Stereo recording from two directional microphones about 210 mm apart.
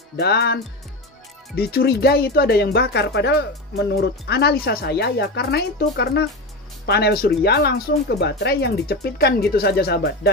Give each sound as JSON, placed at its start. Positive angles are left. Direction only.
{"t": 0.2, "sound": "speech", "side_deg": 50}
{"t": 1.6, "sound": "speech", "side_deg": 50}